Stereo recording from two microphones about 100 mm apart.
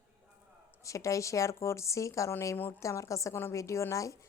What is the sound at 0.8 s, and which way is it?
Speech, 30° left (ahead or behind).